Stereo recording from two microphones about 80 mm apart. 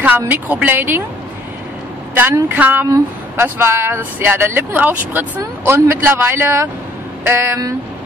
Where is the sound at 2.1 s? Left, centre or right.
Right.